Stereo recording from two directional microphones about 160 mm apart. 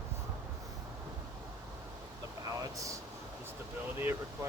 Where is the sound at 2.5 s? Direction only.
20° right (ahead or behind).